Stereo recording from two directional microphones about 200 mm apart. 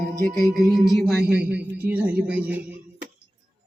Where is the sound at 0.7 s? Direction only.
Centre (ahead or behind).